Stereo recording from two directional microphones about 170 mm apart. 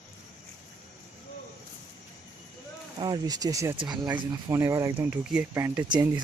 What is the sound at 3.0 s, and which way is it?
Speech, 25° right (ahead or behind).